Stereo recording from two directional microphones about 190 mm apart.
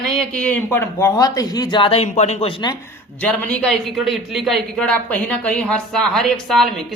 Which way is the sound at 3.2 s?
5° left (ahead or behind).